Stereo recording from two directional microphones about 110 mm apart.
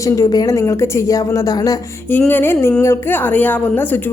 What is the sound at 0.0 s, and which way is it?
A woman's voice, 35° left (ahead or behind).